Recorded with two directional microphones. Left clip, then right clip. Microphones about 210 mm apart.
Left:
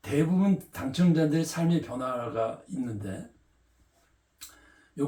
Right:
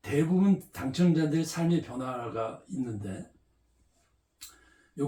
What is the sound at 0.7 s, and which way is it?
Speech, 15° left (ahead or behind).